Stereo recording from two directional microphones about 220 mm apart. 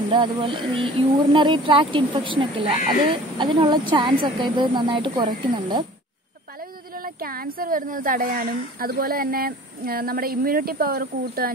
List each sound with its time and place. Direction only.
0.1 s speech: 20° right (ahead or behind)
7.2 s a woman's voice: 40° right (ahead or behind)